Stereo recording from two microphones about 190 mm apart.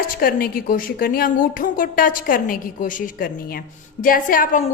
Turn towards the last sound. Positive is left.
turn(degrees=45)  # may be behind; listen again after turning